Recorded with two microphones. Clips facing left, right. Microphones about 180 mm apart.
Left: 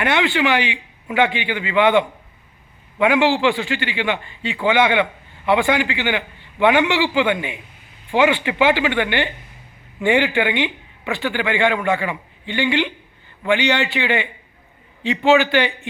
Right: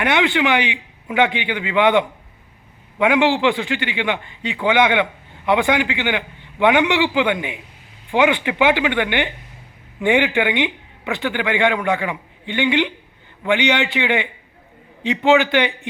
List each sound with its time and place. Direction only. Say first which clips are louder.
0.0 s speech: right 1 dB; 15° right (ahead or behind)